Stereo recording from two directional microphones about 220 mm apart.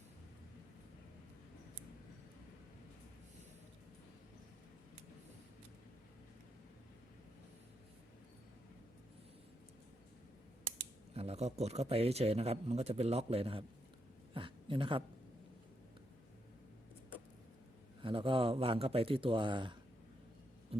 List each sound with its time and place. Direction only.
11.1 s a man's voice: 30° right (ahead or behind)
14.3 s a sound: 25° right (ahead or behind)
18.0 s a man's voice: 25° right (ahead or behind)